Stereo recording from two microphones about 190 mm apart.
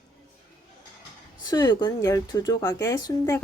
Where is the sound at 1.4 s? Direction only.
20° left (ahead or behind).